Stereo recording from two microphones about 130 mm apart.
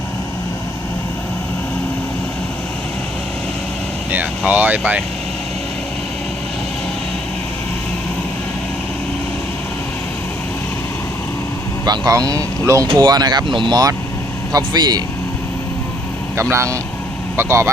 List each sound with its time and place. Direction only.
4.1 s speech: 10° right (ahead or behind)
11.9 s speech: 30° right (ahead or behind)
16.4 s speech: 20° right (ahead or behind)